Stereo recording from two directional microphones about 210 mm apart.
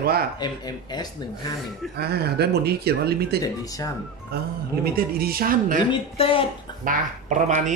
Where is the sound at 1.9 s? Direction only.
50° right (ahead or behind).